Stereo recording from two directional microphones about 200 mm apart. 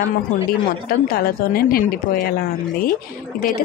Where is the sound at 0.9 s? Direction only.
50° left (ahead or behind).